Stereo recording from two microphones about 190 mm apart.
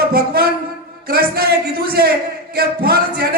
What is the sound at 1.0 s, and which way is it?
A man's voice, 55° right (ahead or behind).